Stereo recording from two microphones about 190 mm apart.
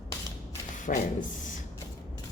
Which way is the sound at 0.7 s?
40° left (ahead or behind).